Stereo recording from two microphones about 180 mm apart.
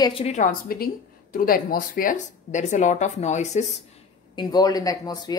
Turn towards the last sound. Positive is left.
turn(degrees=20)  # may be behind; listen again after turning